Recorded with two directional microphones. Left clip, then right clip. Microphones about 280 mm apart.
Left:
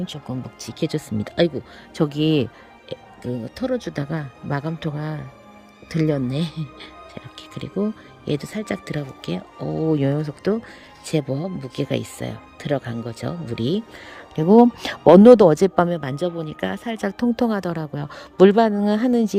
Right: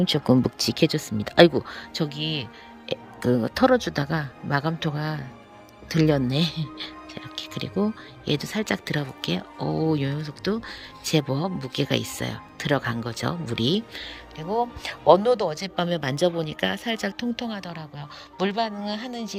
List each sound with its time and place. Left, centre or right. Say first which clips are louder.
0.3 s speech: right 14 dB; right
0.6 s speech: right 3 dB; centre; by 2.5 s left
2.9 s music: right 6 dB; centre
3.4 s speech: right 5 dB; centre
14.4 s speech: left 12 dB; left
14.8 s speech: left 5 dB; left
15.7 s a woman's voice: left 6 dB; centre